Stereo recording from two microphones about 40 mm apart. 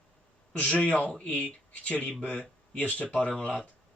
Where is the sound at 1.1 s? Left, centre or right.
Left.